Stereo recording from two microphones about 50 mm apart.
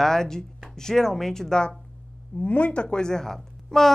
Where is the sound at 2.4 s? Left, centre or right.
Left; by 3.9 s centre.